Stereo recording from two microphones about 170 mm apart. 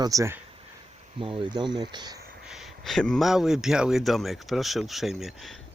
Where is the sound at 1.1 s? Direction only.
30° right (ahead or behind).